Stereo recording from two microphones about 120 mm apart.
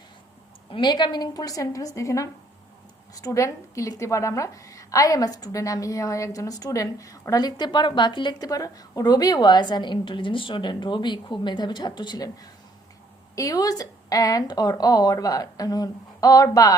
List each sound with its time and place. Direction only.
0.7 s a woman's voice: 40° left (ahead or behind)